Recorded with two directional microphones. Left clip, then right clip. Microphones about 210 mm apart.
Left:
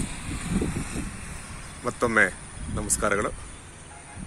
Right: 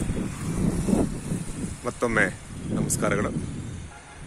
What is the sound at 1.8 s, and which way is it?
Speech, 10° right (ahead or behind).